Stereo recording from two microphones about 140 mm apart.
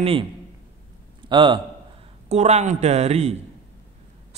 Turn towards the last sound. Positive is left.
turn(degrees=-50)  # may be behind; listen again after turning